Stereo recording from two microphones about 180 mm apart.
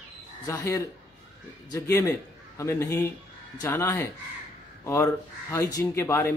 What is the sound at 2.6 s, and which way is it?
Speech, 15° left (ahead or behind).